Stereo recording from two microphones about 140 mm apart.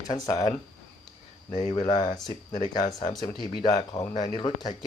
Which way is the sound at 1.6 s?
30° left (ahead or behind).